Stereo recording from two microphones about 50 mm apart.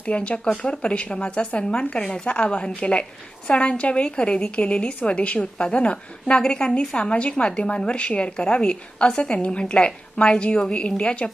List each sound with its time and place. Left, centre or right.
0.0 s a woman's voice: left